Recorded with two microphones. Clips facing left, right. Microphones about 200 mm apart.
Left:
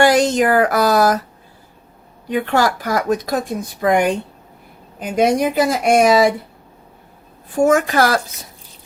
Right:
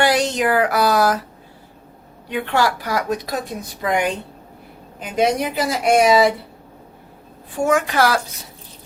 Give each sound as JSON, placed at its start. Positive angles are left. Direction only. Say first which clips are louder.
{"t": 0.0, "sound": "a woman's voice", "louder": "left 4 dB", "side_deg": 45}
{"t": 2.3, "sound": "a woman's voice", "louder": "left 3 dB", "side_deg": 45}
{"t": 7.6, "sound": "a woman's voice", "louder": "left 3 dB", "side_deg": 45}